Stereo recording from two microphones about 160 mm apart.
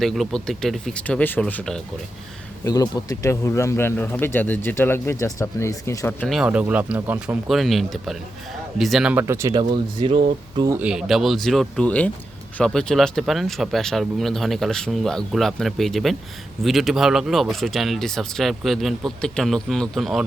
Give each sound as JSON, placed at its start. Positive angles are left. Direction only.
{"t": 0.0, "sound": "speech", "side_deg": 0}
{"t": 2.6, "sound": "speech", "side_deg": 20}
{"t": 6.3, "sound": "speech", "side_deg": -5}
{"t": 9.2, "sound": "speech", "side_deg": -20}
{"t": 9.6, "sound": "speech", "side_deg": -30}
{"t": 10.7, "sound": "speech", "side_deg": -10}